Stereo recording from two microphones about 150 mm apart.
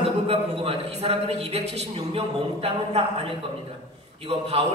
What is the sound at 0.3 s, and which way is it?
A man's voice, 40° right (ahead or behind).